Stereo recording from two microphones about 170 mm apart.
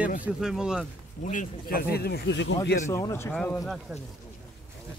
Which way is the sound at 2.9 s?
15° left (ahead or behind).